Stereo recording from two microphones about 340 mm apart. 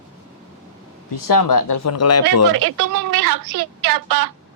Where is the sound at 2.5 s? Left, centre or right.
Right.